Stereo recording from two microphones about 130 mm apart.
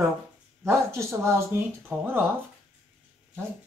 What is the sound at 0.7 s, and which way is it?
Speech, 20° right (ahead or behind).